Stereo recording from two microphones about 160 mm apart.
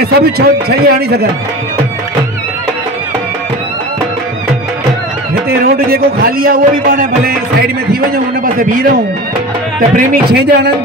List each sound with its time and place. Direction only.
0.0 s a man's voice: 85° right
5.5 s a man's voice: 70° right (ahead or behind)
9.8 s a man's voice: 65° right (ahead or behind); by 10.7 s 90° right